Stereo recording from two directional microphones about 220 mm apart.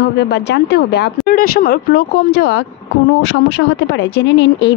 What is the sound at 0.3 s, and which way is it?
Speech, 50° left (ahead or behind).